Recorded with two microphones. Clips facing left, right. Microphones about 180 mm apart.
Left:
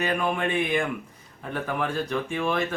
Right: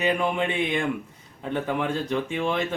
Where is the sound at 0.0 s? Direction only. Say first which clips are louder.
Right 2 dB; 20° right (ahead or behind).